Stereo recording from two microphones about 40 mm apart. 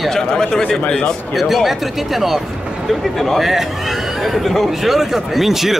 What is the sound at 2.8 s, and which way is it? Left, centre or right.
Speech, centre.